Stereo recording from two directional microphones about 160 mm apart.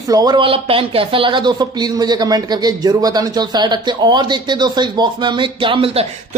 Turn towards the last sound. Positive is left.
turn(degrees=-35)  # may be behind; listen again after turning